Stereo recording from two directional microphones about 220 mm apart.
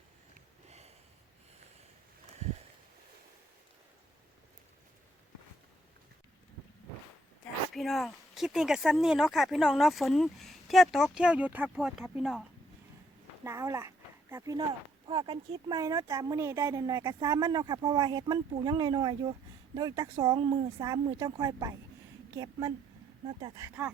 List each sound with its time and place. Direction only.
0.7 s a sound: 30° right (ahead or behind)
7.7 s speech: centre (ahead or behind)
13.4 s speech: 15° right (ahead or behind)
15.0 s speech: 25° right (ahead or behind)
23.4 s speech: 15° right (ahead or behind)